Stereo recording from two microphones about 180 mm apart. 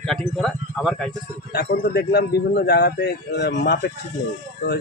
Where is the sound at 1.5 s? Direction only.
65° left (ahead or behind).